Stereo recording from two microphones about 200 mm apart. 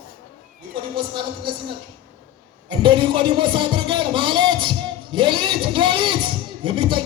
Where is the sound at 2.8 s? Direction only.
25° right (ahead or behind).